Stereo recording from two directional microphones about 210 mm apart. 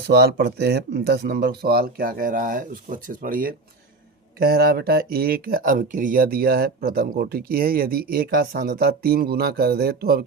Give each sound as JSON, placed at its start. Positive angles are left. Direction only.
{"t": 0.1, "sound": "speech", "side_deg": -50}